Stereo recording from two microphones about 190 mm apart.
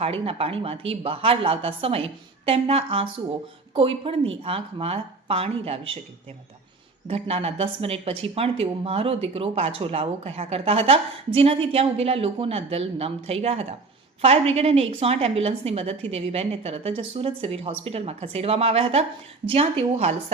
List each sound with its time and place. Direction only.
0.0 s a woman's voice: 30° right (ahead or behind)
7.1 s speech: 30° right (ahead or behind)